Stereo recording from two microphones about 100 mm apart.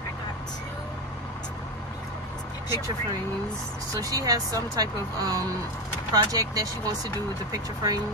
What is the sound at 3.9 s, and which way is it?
Speech, 35° right (ahead or behind).